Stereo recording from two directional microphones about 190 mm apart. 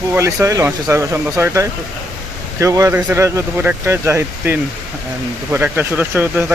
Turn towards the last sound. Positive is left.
turn(degrees=-10)  # may be behind; listen again after turning